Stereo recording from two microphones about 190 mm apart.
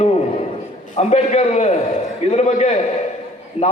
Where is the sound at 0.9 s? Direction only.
40° left (ahead or behind).